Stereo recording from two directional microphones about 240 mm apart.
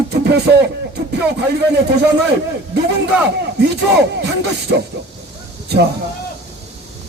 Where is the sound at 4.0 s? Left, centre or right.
Right.